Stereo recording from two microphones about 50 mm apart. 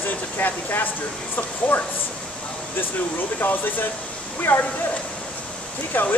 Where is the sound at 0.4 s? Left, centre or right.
Left.